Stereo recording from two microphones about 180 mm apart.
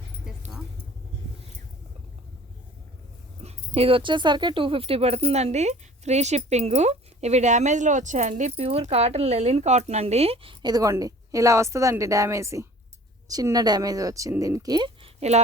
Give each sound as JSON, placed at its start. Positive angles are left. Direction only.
{"t": 0.3, "sound": "dog", "side_deg": -5}
{"t": 3.4, "sound": "speech", "side_deg": -30}